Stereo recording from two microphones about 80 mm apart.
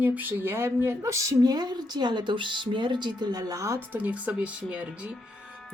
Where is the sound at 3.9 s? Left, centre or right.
Centre.